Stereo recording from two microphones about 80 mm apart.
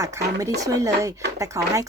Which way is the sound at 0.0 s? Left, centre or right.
Right.